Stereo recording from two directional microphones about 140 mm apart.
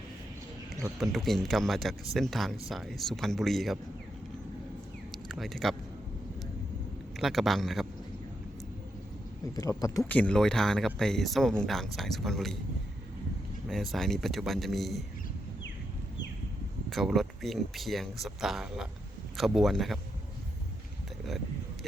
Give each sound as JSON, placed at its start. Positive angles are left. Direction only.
{"t": 0.9, "sound": "speech", "side_deg": 0}
{"t": 5.1, "sound": "a sound", "side_deg": 0}
{"t": 7.2, "sound": "speech", "side_deg": 0}
{"t": 9.6, "sound": "speech", "side_deg": 25}
{"t": 10.1, "sound": "speech", "side_deg": 10}
{"t": 13.9, "sound": "speech", "side_deg": 0}
{"t": 16.9, "sound": "speech", "side_deg": 0}